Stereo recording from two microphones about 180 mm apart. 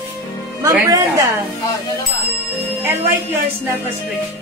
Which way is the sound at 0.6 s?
20° right (ahead or behind).